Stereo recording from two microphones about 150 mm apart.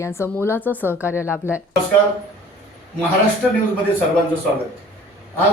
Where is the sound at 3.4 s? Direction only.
5° left (ahead or behind).